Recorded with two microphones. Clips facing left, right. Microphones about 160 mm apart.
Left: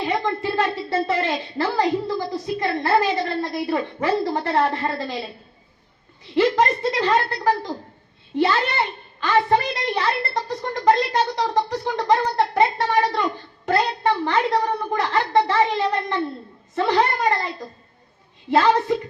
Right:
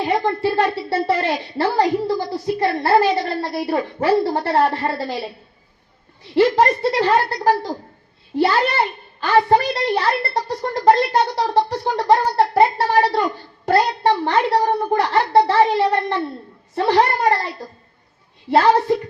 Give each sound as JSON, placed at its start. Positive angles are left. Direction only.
{"t": 0.0, "sound": "a woman's voice", "side_deg": -30}
{"t": 6.3, "sound": "a woman's voice", "side_deg": -35}
{"t": 18.5, "sound": "a woman's voice", "side_deg": -35}